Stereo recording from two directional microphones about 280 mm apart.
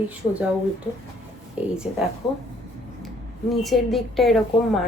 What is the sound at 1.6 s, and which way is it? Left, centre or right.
Speech, centre.